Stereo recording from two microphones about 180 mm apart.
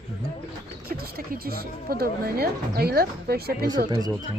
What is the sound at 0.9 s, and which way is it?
A woman's voice, 60° right (ahead or behind).